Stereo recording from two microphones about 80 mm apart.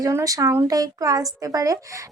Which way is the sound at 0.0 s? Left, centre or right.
Right.